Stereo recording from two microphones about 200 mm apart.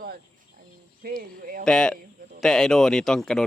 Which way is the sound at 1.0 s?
50° right (ahead or behind).